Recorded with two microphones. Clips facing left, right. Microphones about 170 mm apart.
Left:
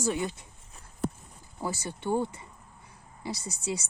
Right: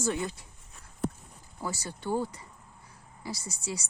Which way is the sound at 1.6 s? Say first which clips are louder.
Left 3 dB; 25° left (ahead or behind).